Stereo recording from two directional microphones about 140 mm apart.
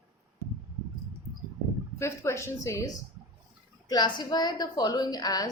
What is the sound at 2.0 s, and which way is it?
Speech, 20° left (ahead or behind).